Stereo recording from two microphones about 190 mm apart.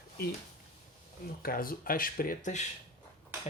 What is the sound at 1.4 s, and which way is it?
Speech, 50° left (ahead or behind).